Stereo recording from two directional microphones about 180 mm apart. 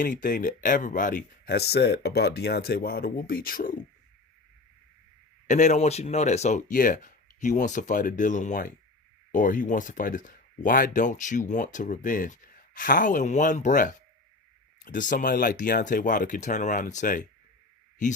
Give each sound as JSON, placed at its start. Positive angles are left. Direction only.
{"t": 0.0, "sound": "speech", "side_deg": 50}
{"t": 5.5, "sound": "speech", "side_deg": 40}